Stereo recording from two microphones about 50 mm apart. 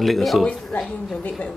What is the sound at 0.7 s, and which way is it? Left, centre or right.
Speech, left.